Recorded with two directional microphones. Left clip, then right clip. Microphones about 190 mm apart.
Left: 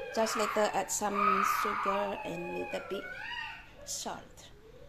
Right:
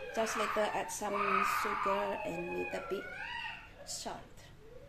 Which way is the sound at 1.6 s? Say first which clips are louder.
Left 2 dB; 15° left (ahead or behind).